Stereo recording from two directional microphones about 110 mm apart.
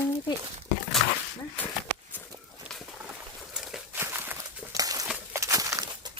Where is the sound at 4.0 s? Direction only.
20° right (ahead or behind).